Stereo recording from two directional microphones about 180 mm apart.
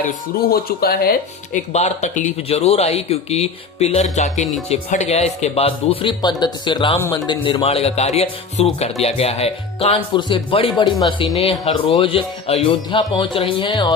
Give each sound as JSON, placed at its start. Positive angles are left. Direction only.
{"t": 0.5, "sound": "speech", "side_deg": 55}
{"t": 1.5, "sound": "speech", "side_deg": 40}